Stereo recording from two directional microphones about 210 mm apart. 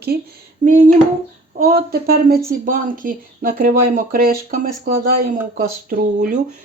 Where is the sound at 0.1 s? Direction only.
45° right (ahead or behind).